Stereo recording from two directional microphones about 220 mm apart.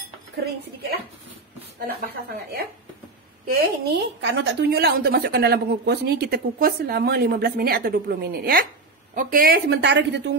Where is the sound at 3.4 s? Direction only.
45° right (ahead or behind).